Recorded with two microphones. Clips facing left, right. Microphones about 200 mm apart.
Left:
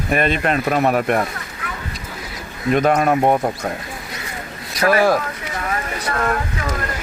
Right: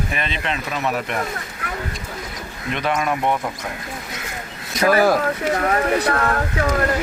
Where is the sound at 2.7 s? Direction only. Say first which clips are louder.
Left 7 dB; 45° left (ahead or behind).